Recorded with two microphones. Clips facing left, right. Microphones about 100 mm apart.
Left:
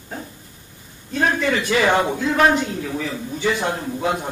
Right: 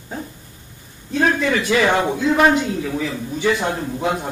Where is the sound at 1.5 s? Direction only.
20° right (ahead or behind).